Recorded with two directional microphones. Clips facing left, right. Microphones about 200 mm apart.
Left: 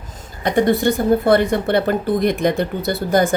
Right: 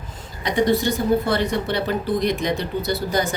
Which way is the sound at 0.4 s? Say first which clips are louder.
Left 4 dB; 55° left (ahead or behind).